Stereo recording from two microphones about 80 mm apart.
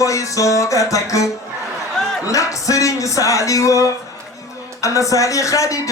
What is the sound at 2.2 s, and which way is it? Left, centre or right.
Speech, left.